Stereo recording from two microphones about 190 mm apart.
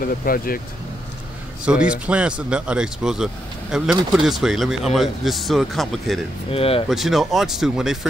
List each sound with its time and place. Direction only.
0.0 s speech: 50° left (ahead or behind)
1.7 s speech: 5° right (ahead or behind)
6.5 s speech: 30° left (ahead or behind)
6.9 s speech: centre (ahead or behind)